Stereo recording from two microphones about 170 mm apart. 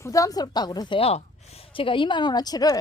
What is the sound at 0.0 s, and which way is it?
A woman's voice, 20° left (ahead or behind).